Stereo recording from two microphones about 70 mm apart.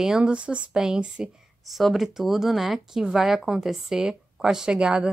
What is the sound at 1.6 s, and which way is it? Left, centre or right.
Speech, centre.